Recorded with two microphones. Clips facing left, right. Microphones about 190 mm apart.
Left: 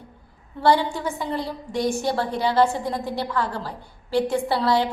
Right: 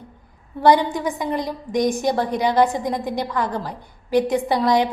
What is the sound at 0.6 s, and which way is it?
A woman's voice, 15° right (ahead or behind).